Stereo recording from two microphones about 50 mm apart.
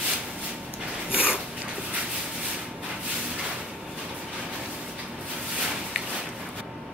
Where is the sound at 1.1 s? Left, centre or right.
Right.